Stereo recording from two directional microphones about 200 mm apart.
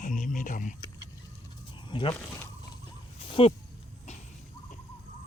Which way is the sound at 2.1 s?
15° left (ahead or behind).